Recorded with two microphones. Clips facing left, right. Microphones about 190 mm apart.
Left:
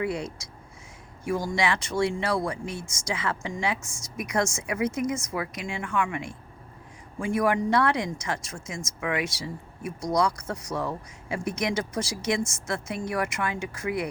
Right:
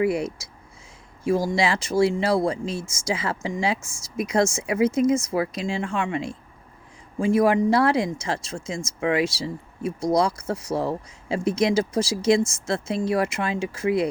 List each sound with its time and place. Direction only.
0.0 s speech: 25° right (ahead or behind)
1.5 s speech: 25° right (ahead or behind)